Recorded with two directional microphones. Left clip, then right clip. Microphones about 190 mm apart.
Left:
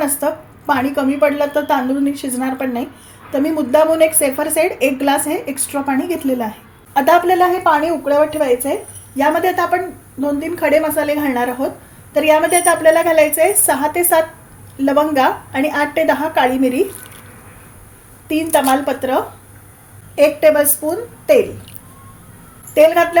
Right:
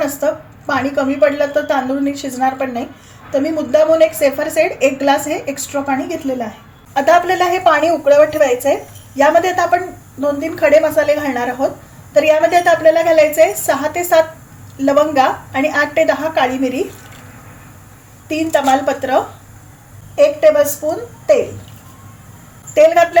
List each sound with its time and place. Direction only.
0.2 s a woman's voice: 25° left (ahead or behind)
9.1 s a woman's voice: 15° left (ahead or behind)
18.3 s a woman's voice: 15° left (ahead or behind)
22.7 s speech: 15° left (ahead or behind)